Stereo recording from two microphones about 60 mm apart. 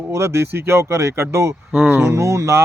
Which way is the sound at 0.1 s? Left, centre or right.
Right.